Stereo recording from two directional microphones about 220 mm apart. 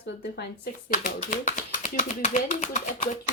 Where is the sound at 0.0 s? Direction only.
45° left (ahead or behind).